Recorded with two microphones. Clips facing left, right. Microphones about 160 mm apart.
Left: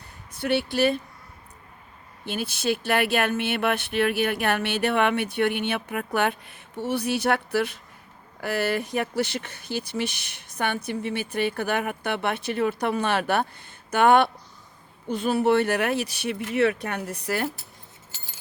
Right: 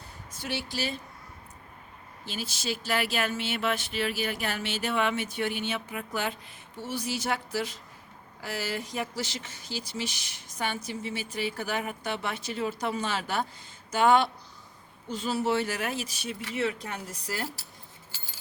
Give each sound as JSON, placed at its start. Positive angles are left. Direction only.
{"t": 0.3, "sound": "speech", "side_deg": 60}
{"t": 2.2, "sound": "speech", "side_deg": 60}